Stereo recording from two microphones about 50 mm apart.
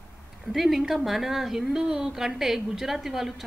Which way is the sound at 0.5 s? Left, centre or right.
Centre.